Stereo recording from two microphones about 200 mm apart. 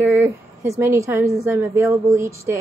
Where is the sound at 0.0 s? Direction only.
10° right (ahead or behind).